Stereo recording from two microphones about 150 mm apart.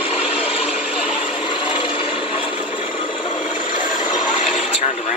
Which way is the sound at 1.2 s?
35° left (ahead or behind).